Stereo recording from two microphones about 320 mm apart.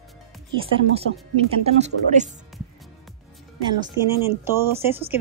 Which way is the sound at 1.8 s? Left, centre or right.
Right.